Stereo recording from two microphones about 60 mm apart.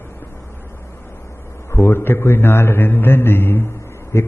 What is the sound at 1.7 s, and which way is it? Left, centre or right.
A man's voice, left.